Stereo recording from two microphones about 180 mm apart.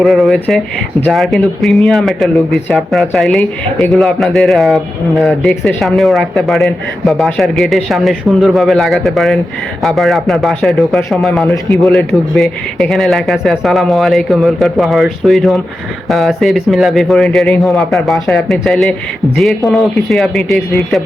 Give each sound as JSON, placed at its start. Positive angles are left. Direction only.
{"t": 0.0, "sound": "a man's voice", "side_deg": 0}
{"t": 11.4, "sound": "a man's voice", "side_deg": 15}
{"t": 11.8, "sound": "a man's voice", "side_deg": 0}